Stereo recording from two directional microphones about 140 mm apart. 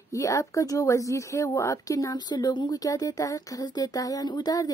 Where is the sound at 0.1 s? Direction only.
20° left (ahead or behind).